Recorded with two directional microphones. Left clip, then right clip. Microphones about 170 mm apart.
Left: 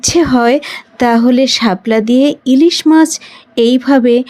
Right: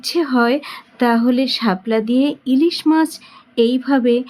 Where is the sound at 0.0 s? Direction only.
35° left (ahead or behind).